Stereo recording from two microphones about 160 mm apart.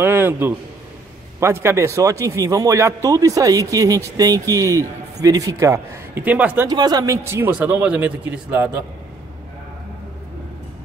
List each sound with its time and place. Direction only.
0.0 s a sound: 10° right (ahead or behind)
1.4 s speech: 15° right (ahead or behind)
6.7 s speech: 25° right (ahead or behind)